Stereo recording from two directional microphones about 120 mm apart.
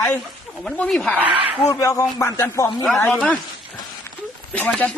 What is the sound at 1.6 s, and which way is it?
A man's voice, 25° left (ahead or behind).